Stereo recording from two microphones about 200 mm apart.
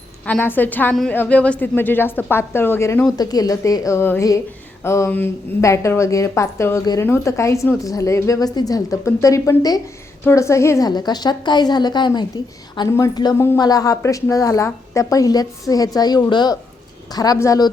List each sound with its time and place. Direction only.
0.3 s a woman's voice: 10° left (ahead or behind)